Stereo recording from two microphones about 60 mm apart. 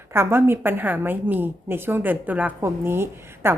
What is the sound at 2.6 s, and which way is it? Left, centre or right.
Speech, right.